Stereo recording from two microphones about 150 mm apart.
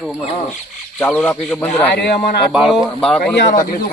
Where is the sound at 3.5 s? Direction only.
65° left (ahead or behind).